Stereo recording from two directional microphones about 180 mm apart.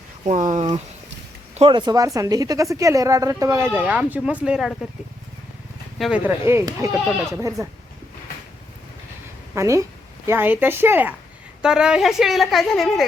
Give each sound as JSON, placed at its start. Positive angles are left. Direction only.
{"t": 0.3, "sound": "speech", "side_deg": -40}
{"t": 6.0, "sound": "speech", "side_deg": -5}
{"t": 7.1, "sound": "a woman's voice", "side_deg": -5}
{"t": 9.6, "sound": "a woman's voice", "side_deg": -15}